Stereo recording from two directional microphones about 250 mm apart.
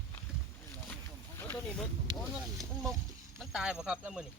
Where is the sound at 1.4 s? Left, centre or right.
Centre.